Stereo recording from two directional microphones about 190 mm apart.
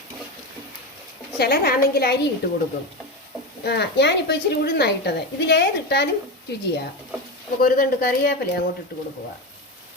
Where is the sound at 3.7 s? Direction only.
65° left (ahead or behind).